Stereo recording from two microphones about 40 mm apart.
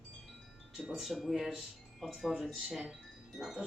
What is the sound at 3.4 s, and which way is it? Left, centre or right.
Speech, centre.